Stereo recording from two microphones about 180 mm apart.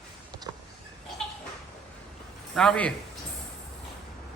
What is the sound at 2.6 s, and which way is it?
Speech, 5° left (ahead or behind).